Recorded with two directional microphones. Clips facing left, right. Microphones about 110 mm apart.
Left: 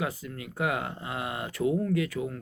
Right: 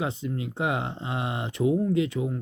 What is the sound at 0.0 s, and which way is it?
Speech, 25° right (ahead or behind).